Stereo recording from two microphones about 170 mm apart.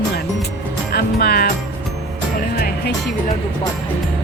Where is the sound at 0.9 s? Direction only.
65° left (ahead or behind).